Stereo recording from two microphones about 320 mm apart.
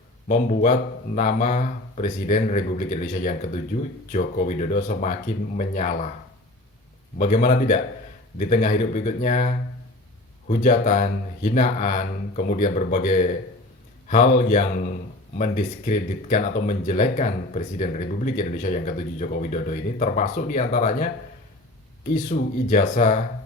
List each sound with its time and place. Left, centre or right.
0.3 s speech: left
7.2 s speech: left
22.1 s speech: left